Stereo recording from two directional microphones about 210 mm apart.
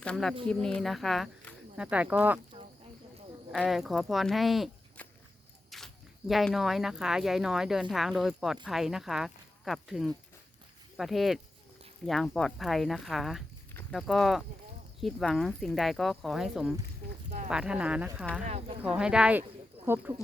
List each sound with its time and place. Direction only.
0.0 s speech: 5° left (ahead or behind)
3.5 s speech: centre (ahead or behind)
18.4 s speech: 30° right (ahead or behind)
18.8 s speech: 5° right (ahead or behind)